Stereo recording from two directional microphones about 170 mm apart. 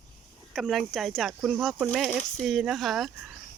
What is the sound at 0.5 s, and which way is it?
Speech, centre (ahead or behind).